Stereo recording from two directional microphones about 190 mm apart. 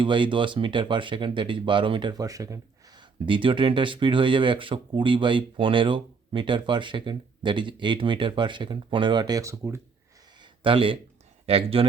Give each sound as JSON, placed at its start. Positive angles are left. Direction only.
{"t": 0.0, "sound": "speech", "side_deg": -25}
{"t": 10.4, "sound": "a sound", "side_deg": -25}
{"t": 11.4, "sound": "speech", "side_deg": -30}